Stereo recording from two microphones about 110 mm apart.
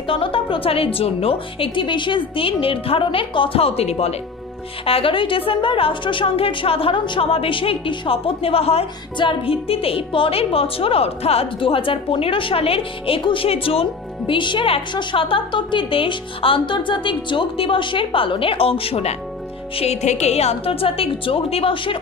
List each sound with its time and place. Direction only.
0.0 s a woman's voice: 55° left (ahead or behind); by 4.2 s 70° left (ahead or behind)
4.8 s a woman's voice: 55° left (ahead or behind)